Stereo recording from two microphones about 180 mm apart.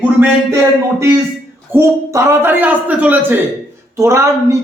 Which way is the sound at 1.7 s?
15° right (ahead or behind).